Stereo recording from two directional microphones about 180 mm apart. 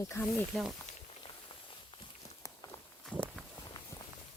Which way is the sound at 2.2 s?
20° left (ahead or behind).